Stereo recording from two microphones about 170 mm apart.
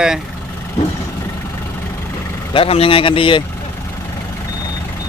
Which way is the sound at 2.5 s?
35° left (ahead or behind).